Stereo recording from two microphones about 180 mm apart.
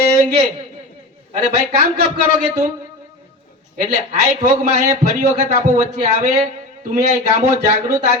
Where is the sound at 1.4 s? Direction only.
35° right (ahead or behind).